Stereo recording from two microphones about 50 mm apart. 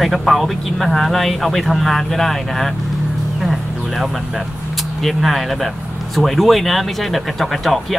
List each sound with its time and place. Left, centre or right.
0.0 s speech: centre
5.0 s speech: centre